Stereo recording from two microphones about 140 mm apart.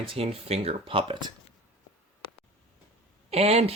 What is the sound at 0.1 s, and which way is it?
Speech, 45° right (ahead or behind).